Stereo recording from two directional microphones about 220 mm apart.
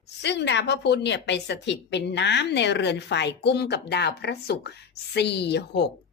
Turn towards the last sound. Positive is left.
turn(degrees=50)  # may be behind; listen again after turning